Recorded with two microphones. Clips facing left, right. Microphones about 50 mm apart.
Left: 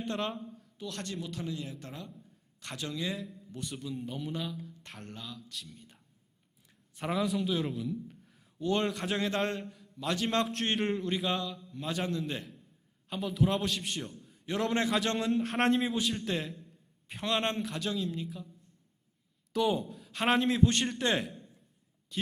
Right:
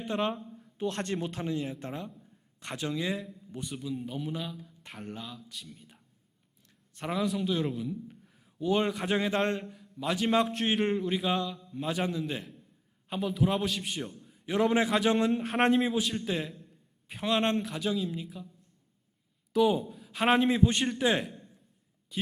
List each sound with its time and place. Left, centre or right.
0.0 s a man's voice: centre
0.8 s a man's voice: right; by 18.4 s centre
19.5 s a man's voice: centre